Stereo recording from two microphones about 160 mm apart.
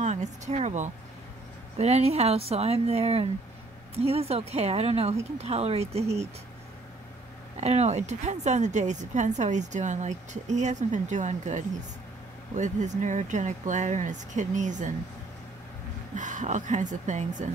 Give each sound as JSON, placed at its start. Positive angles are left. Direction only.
{"t": 0.0, "sound": "speech", "side_deg": -45}
{"t": 7.6, "sound": "speech", "side_deg": -45}
{"t": 16.2, "sound": "speech", "side_deg": -50}